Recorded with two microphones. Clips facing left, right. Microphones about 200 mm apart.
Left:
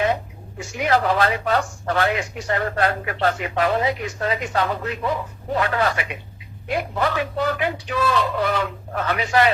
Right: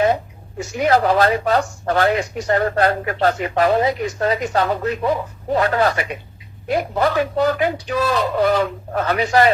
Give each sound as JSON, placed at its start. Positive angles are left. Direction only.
{"t": 0.8, "sound": "speech", "side_deg": -40}